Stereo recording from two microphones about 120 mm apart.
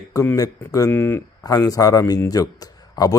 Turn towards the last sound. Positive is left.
turn(degrees=30)  # may be behind; listen again after turning